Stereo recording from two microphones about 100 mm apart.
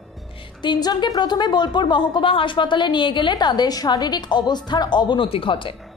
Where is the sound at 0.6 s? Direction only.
45° left (ahead or behind).